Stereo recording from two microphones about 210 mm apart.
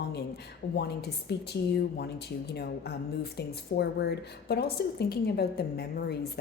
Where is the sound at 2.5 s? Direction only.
50° left (ahead or behind).